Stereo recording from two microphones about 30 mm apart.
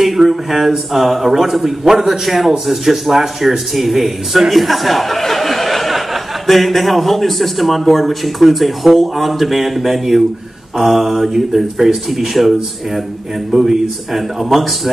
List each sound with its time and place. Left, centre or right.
0.0 s speech: centre
13.5 s speech: centre
14.1 s speech: centre